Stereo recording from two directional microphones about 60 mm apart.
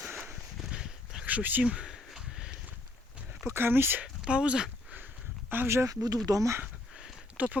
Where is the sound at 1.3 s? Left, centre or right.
Right.